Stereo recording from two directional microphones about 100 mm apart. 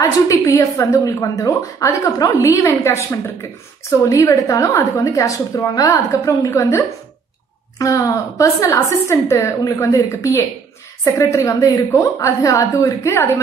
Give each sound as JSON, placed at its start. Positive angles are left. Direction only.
{"t": 0.0, "sound": "a woman's voice", "side_deg": 35}
{"t": 7.8, "sound": "a woman's voice", "side_deg": 30}